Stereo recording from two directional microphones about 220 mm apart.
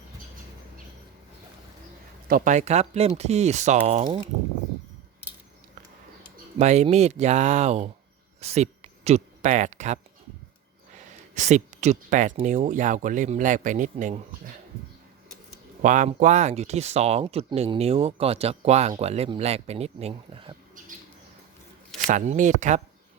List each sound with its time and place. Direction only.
2.2 s speech: 40° right (ahead or behind)
6.6 s speech: 30° right (ahead or behind)
11.3 s speech: 30° right (ahead or behind)
15.8 s speech: 35° right (ahead or behind)
22.0 s speech: 35° right (ahead or behind)